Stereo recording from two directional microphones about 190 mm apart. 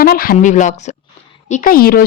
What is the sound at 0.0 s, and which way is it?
A woman's voice, 50° left (ahead or behind).